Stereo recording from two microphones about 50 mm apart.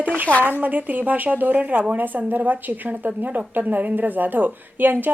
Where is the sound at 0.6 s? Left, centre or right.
Right.